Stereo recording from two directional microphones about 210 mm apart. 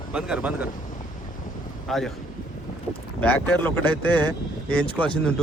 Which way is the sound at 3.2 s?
10° left (ahead or behind).